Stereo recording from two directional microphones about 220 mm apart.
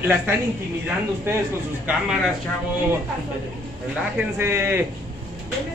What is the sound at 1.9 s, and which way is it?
Speech, 5° right (ahead or behind).